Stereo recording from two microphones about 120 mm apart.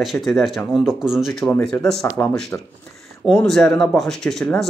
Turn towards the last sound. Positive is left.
turn(degrees=5)  # may be behind; listen again after turning